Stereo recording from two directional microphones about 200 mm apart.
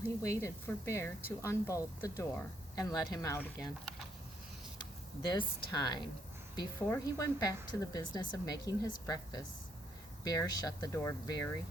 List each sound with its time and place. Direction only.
0.2 s a woman's voice: 15° left (ahead or behind)
5.2 s a woman's voice: 20° left (ahead or behind)